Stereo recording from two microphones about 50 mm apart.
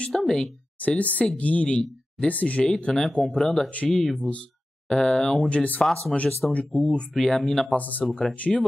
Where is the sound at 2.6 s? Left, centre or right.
Centre.